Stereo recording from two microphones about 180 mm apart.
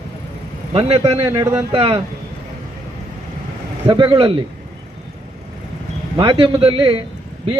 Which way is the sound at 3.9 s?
25° right (ahead or behind).